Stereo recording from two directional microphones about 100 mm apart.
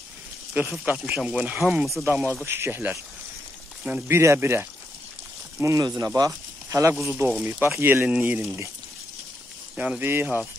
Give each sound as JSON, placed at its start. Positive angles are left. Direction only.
{"t": 0.6, "sound": "speech", "side_deg": -15}
{"t": 2.4, "sound": "speech", "side_deg": -25}
{"t": 4.2, "sound": "speech", "side_deg": -25}
{"t": 5.6, "sound": "speech", "side_deg": -35}
{"t": 7.1, "sound": "speech", "side_deg": -20}
{"t": 9.8, "sound": "speech", "side_deg": -15}